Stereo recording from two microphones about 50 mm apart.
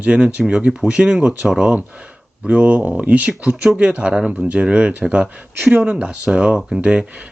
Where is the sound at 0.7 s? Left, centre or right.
Centre.